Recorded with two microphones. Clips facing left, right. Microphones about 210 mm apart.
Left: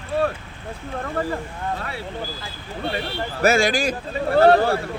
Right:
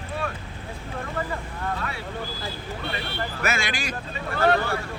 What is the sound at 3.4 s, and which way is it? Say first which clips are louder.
Speech: left 12 dB; 35° left (ahead or behind).